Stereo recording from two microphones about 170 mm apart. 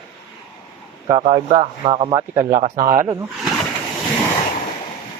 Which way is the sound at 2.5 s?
50° right (ahead or behind).